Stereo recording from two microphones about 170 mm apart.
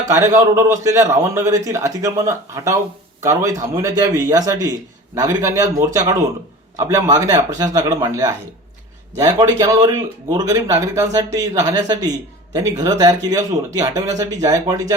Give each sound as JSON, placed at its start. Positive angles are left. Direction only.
{"t": 0.3, "sound": "a man's voice", "side_deg": -15}